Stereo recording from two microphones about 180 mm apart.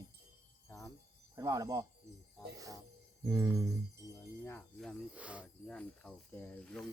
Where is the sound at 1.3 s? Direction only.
20° right (ahead or behind).